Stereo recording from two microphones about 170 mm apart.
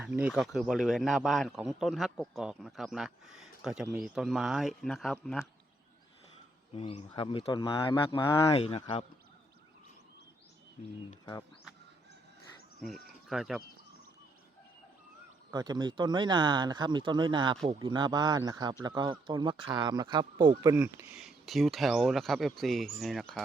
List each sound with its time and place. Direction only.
0.0 s a man's voice: 5° right (ahead or behind)
6.7 s speech: 30° left (ahead or behind)
8.1 s speech: 15° left (ahead or behind)
8.5 s speech: 35° left (ahead or behind)
12.8 s speech: centre (ahead or behind)
15.5 s speech: 25° right (ahead or behind); by 23.4 s 5° left (ahead or behind)